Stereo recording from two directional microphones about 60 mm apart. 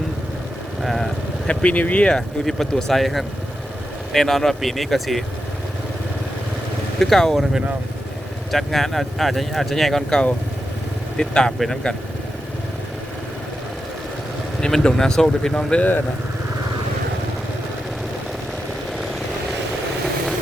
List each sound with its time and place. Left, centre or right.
0.8 s vehicle: centre
1.5 s speech: left; by 5.2 s centre
7.0 s speech: centre
8.5 s speech: centre
14.6 s speech: centre